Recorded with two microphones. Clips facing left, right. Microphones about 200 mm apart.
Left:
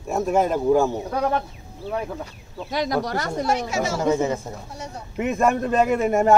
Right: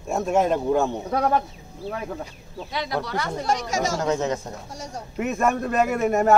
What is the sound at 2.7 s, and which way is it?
Speech, 45° left (ahead or behind).